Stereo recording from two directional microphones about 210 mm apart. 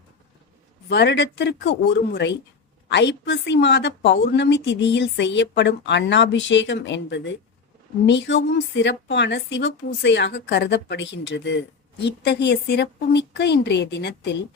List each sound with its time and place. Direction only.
0.9 s a woman's voice: 55° left (ahead or behind)